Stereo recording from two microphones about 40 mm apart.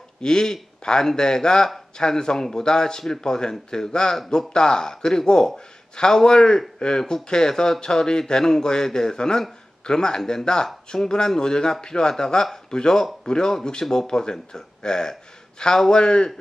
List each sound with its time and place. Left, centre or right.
0.2 s speech: centre